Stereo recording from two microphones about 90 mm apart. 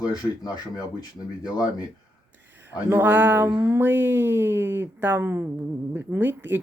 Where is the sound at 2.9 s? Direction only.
20° right (ahead or behind).